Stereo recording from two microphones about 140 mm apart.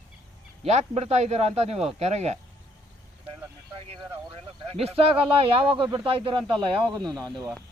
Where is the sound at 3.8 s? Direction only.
40° right (ahead or behind).